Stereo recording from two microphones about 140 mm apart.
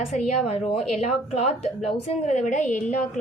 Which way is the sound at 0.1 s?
55° left (ahead or behind).